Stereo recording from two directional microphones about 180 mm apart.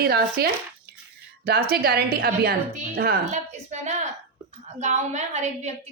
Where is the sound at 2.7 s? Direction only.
50° right (ahead or behind).